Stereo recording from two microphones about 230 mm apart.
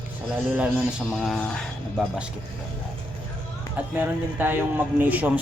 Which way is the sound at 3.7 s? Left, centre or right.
Centre.